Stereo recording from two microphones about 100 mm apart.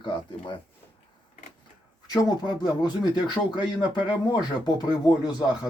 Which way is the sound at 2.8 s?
50° left (ahead or behind).